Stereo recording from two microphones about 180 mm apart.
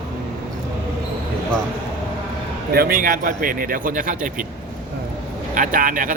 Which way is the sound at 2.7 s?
55° right (ahead or behind).